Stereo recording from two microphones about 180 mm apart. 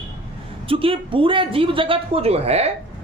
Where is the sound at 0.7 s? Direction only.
30° right (ahead or behind).